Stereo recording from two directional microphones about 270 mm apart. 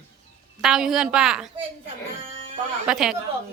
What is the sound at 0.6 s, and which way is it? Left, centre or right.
Speech, centre.